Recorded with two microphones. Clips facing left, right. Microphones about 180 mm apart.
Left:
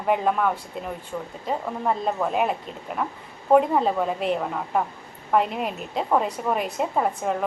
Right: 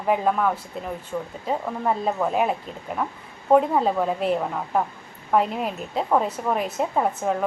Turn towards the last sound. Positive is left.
turn(degrees=0)  # may be behind; listen again after turning